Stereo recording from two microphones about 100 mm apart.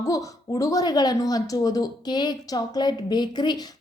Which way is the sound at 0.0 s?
35° left (ahead or behind).